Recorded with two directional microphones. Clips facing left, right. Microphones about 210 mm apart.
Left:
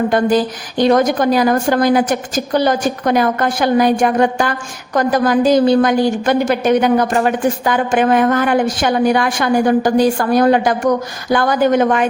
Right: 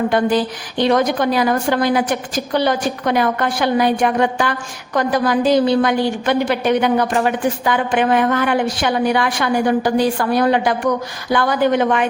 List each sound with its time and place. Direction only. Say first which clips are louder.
0.1 s a woman's voice: left 2 dB; 45° left (ahead or behind)